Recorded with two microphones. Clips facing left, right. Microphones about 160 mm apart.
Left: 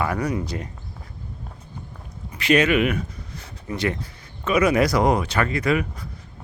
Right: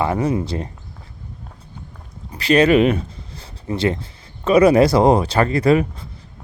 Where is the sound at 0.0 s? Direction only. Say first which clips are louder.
Right 5 dB; 25° right (ahead or behind).